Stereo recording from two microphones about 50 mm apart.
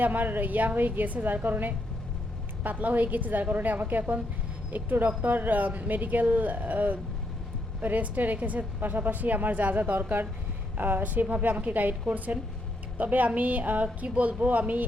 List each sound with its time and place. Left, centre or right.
0.0 s a woman's voice: right